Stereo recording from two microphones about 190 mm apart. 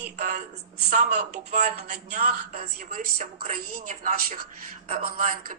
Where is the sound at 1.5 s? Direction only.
40° right (ahead or behind).